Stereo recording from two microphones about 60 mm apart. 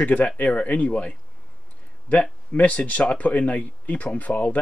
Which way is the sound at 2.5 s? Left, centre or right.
Left.